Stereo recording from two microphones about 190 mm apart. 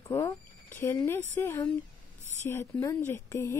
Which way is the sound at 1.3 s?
15° left (ahead or behind).